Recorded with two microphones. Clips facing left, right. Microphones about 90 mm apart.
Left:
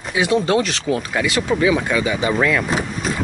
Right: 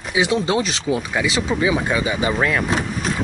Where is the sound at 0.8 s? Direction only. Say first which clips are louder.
Left 1 dB; 5° right (ahead or behind).